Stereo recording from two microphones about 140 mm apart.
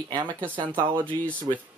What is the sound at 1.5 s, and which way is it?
Speech, 35° right (ahead or behind).